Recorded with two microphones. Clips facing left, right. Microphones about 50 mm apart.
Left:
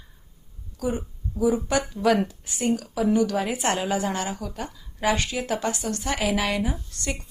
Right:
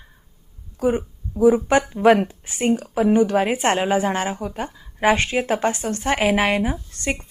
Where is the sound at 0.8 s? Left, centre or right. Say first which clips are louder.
Right 7 dB; right.